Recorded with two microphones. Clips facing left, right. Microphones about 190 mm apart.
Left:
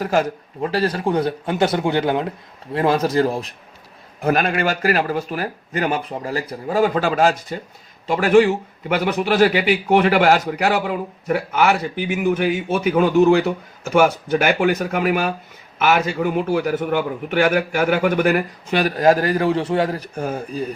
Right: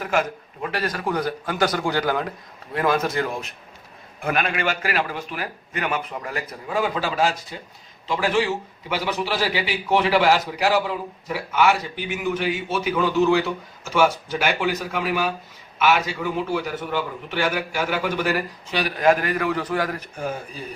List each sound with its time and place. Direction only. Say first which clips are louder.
0.0 s a man's voice: left 4 dB; 35° left (ahead or behind)
20.1 s a man's voice: left 4 dB; 45° left (ahead or behind)